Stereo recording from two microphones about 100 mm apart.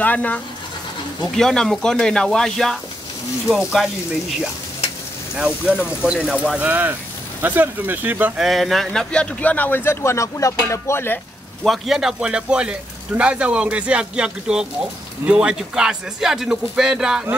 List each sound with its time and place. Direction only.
0.0 s speech: 15° left (ahead or behind)
1.2 s speech: 5° left (ahead or behind)
3.4 s speech: 10° right (ahead or behind)
5.3 s speech: 10° right (ahead or behind)
8.4 s a man's voice: centre (ahead or behind); by 11.1 s 25° left (ahead or behind)
11.6 s speech: centre (ahead or behind)